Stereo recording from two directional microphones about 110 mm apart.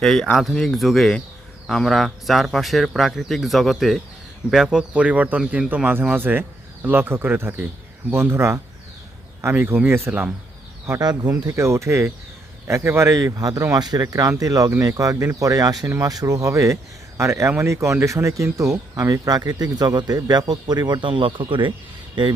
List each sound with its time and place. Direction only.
0.0 s speech: 5° left (ahead or behind); by 10.2 s 20° right (ahead or behind)
11.0 s speech: 35° right (ahead or behind)